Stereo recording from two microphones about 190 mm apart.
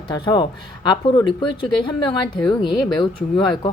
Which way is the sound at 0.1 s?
25° left (ahead or behind).